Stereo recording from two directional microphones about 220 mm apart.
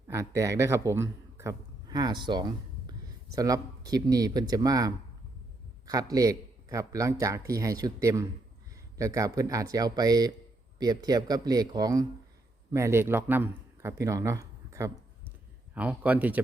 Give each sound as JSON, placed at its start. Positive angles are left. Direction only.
{"t": 0.1, "sound": "a man's voice", "side_deg": -15}